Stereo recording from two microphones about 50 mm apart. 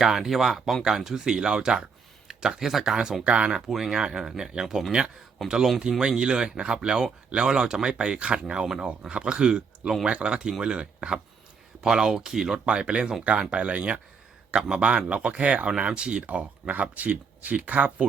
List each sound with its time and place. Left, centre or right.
0.0 s speech: centre
3.7 s speech: centre
5.4 s speech: centre
6.0 s speech: centre